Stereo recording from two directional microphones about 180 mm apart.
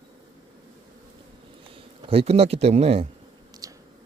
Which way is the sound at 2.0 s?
30° right (ahead or behind).